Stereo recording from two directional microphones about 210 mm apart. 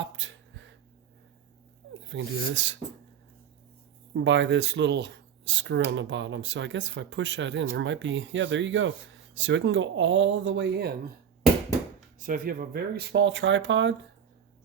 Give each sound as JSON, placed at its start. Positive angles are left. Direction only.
{"t": 0.0, "sound": "a sound", "side_deg": -60}
{"t": 2.0, "sound": "speech", "side_deg": -60}
{"t": 4.1, "sound": "speech", "side_deg": -60}
{"t": 12.2, "sound": "speech", "side_deg": -40}